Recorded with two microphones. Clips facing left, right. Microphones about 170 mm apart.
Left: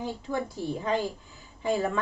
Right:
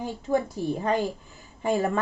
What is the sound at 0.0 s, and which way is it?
A woman's voice, 45° right (ahead or behind).